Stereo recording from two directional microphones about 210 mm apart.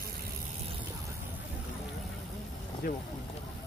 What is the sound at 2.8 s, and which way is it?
Speech, 45° left (ahead or behind).